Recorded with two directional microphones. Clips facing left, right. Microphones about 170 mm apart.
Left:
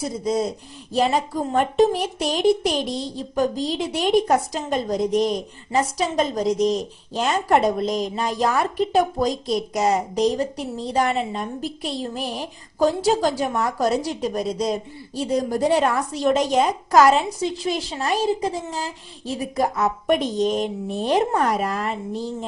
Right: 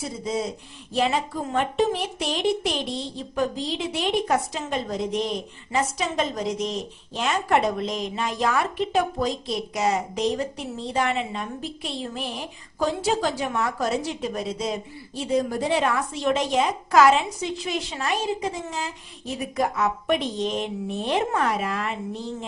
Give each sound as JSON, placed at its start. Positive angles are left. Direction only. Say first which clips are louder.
{"t": 0.0, "sound": "speech", "louder": "left 5 dB", "side_deg": 40}